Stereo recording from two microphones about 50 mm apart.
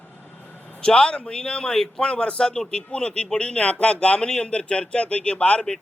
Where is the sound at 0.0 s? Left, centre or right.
Left.